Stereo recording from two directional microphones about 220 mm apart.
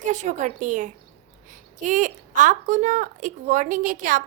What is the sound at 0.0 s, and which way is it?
A woman's voice, 35° right (ahead or behind).